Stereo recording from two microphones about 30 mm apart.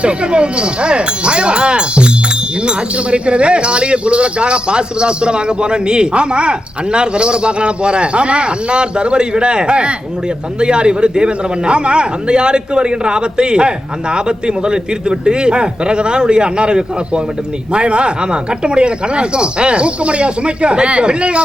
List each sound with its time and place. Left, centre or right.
0.0 s speech: right